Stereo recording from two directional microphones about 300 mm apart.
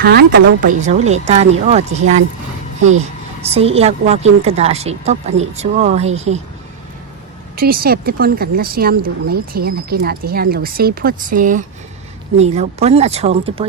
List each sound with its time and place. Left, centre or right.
0.0 s speech: right
7.5 s speech: right